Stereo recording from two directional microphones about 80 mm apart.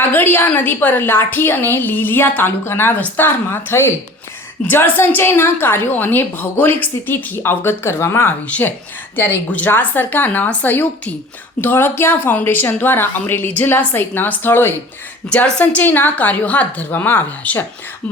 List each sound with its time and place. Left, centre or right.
0.1 s a woman's voice: left
8.4 s a woman's voice: centre
15.3 s a woman's voice: centre